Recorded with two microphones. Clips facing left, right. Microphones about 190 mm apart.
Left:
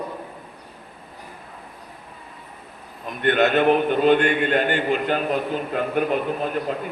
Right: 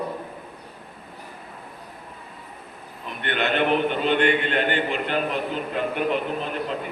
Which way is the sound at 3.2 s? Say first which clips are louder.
Left 6 dB; 45° left (ahead or behind).